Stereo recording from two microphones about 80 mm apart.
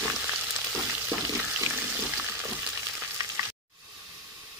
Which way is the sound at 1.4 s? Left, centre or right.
Centre.